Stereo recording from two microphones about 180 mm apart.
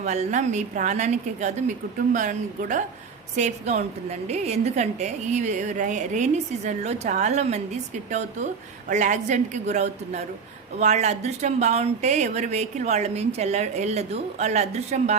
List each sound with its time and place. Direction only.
0.0 s a woman's voice: 40° right (ahead or behind)